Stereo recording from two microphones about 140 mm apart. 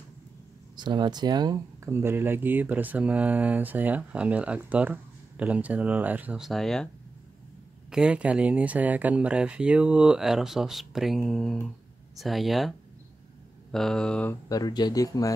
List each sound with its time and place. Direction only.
0.7 s speech: 30° right (ahead or behind)
1.9 s speech: 15° right (ahead or behind); by 6.9 s 5° left (ahead or behind)
7.9 s speech: 5° right (ahead or behind)
14.5 s speech: 30° left (ahead or behind)